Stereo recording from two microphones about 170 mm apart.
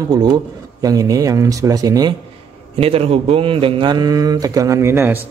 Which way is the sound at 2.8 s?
35° right (ahead or behind).